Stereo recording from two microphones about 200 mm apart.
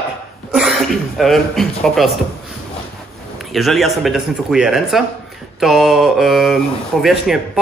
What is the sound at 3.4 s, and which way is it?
Speech, centre (ahead or behind).